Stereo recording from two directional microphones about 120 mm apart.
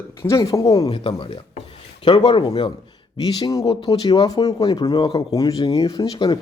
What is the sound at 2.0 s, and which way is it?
Speech, 40° left (ahead or behind).